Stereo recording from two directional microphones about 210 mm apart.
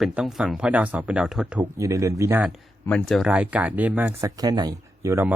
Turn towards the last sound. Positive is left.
turn(degrees=-15)  # may be behind; listen again after turning